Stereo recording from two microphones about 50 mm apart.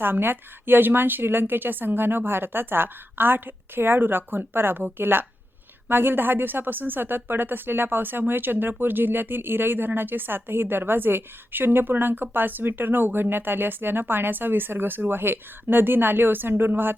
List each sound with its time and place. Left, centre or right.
0.0 s speech: right